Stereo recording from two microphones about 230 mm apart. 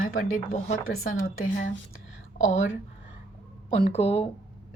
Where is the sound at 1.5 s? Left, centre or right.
Left.